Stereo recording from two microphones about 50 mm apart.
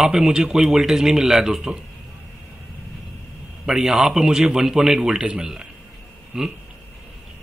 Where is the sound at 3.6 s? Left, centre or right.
Centre.